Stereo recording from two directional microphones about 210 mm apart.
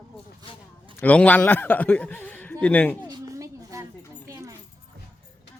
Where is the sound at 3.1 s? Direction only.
15° right (ahead or behind).